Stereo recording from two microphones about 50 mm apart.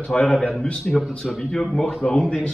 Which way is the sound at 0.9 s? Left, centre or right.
Centre.